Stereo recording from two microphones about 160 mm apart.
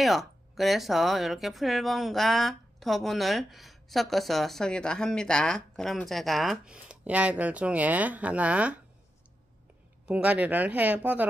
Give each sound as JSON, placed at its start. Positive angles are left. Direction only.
{"t": 0.0, "sound": "speech", "side_deg": 0}
{"t": 10.0, "sound": "speech", "side_deg": -10}